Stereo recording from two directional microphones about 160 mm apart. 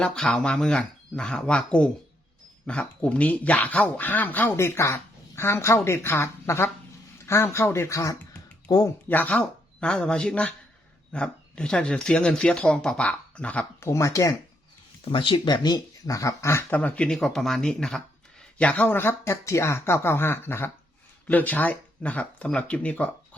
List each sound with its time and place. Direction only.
0.0 s speech: 5° left (ahead or behind)
15.0 s speech: 30° left (ahead or behind); by 23.0 s 10° left (ahead or behind)